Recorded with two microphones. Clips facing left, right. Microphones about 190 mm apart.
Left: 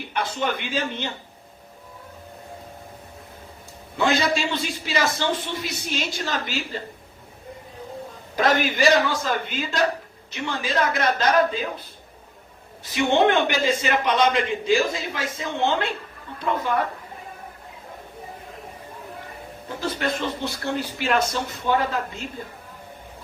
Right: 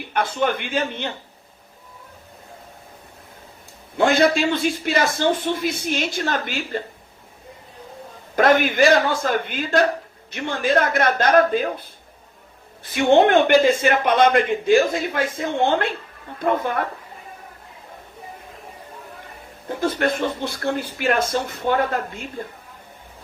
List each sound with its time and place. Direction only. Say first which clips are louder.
0.1 s a man's voice: right 5 dB; 55° right (ahead or behind)
3.9 s a man's voice: right 5 dB; 55° right (ahead or behind)
8.4 s a man's voice: right 5 dB; 55° right (ahead or behind)
12.8 s a man's voice: right 4 dB; 55° right (ahead or behind)
19.6 s a man's voice: right 5 dB; 55° right (ahead or behind)